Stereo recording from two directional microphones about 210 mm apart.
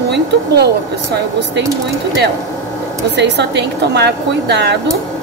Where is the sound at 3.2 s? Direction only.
55° right (ahead or behind).